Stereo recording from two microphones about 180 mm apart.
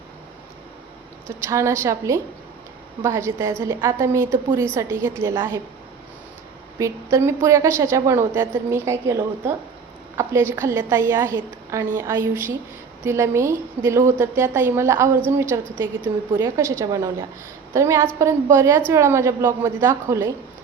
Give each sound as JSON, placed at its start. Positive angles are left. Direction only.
{"t": 1.5, "sound": "a woman's voice", "side_deg": -15}
{"t": 6.7, "sound": "a woman's voice", "side_deg": -15}